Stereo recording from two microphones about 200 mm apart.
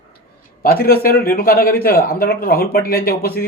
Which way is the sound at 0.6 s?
50° left (ahead or behind).